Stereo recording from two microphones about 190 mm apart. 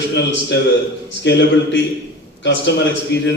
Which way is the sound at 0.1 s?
65° left (ahead or behind).